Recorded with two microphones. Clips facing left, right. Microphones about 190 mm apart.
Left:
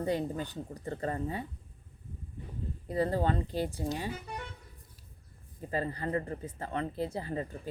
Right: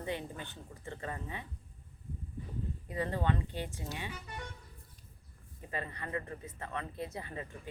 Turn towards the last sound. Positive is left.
turn(degrees=35)  # may be behind; listen again after turning